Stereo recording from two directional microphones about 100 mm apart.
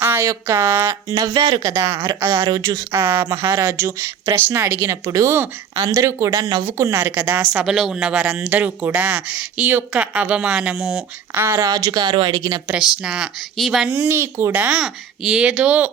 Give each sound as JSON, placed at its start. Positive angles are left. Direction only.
{"t": 0.0, "sound": "a sound", "side_deg": -25}
{"t": 0.3, "sound": "a woman's voice", "side_deg": -25}
{"t": 3.0, "sound": "speech", "side_deg": -25}
{"t": 7.6, "sound": "speech", "side_deg": -5}
{"t": 11.3, "sound": "speech", "side_deg": -25}
{"t": 11.6, "sound": "speech", "side_deg": -40}
{"t": 12.6, "sound": "speech", "side_deg": -10}
{"t": 13.8, "sound": "speech", "side_deg": -20}
{"t": 14.5, "sound": "speech", "side_deg": -10}